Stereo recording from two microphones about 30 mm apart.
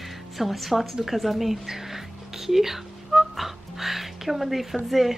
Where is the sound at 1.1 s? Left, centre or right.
Centre.